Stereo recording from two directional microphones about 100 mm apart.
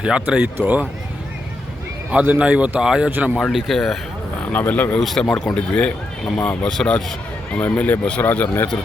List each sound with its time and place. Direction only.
0.0 s a man's voice: 10° right (ahead or behind)
2.0 s a man's voice: 15° right (ahead or behind)
3.5 s speech: centre (ahead or behind)
4.5 s speech: 15° left (ahead or behind)
4.9 s speech: centre (ahead or behind)